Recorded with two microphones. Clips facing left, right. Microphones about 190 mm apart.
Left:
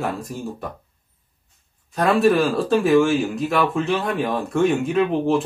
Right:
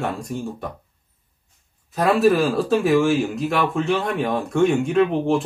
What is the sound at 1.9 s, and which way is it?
Speech, centre (ahead or behind).